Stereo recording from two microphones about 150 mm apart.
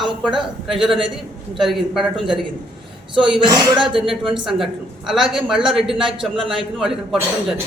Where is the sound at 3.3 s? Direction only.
35° right (ahead or behind).